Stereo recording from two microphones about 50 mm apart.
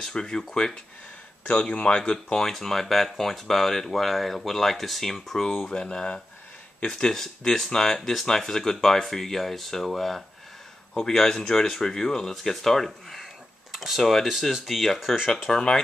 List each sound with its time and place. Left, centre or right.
0.1 s speech: centre
1.5 s speech: left
2.4 s speech: centre